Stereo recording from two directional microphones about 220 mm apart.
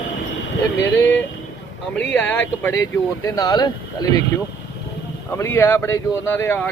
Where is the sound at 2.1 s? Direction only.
10° left (ahead or behind).